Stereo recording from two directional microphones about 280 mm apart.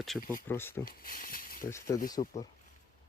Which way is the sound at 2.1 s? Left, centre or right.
Left.